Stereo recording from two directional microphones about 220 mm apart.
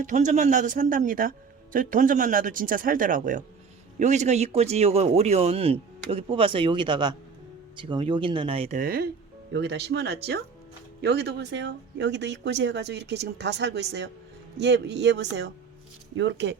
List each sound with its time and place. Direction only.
0.0 s speech: 35° right (ahead or behind)
8.8 s speech: 40° right (ahead or behind)